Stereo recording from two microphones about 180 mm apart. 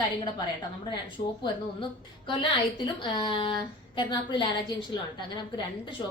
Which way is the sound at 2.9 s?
25° left (ahead or behind).